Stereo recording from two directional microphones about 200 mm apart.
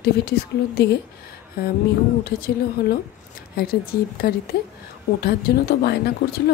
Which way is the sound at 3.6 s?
50° left (ahead or behind).